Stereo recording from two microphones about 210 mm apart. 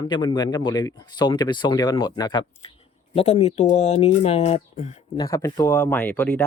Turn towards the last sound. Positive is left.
turn(degrees=5)  # may be behind; listen again after turning